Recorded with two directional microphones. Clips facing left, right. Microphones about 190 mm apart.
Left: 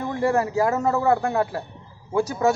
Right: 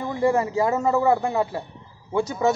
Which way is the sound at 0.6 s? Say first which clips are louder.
Even; centre (ahead or behind).